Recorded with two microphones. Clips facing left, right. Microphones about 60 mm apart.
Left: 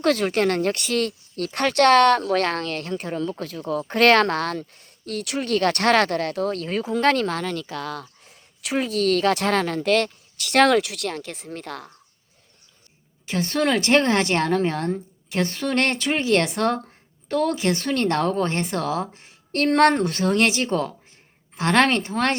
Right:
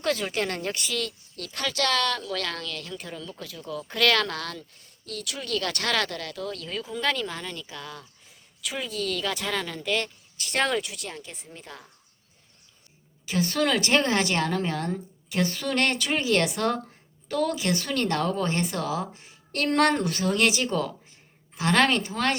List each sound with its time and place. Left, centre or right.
0.0 s speech: left
8.7 s speech: left
13.2 s speech: left
19.6 s speech: left